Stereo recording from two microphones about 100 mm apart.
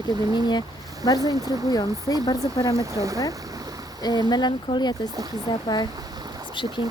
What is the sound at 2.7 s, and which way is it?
Speech, 35° right (ahead or behind).